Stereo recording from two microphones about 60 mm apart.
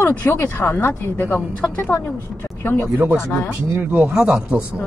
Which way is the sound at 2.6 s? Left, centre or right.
Left.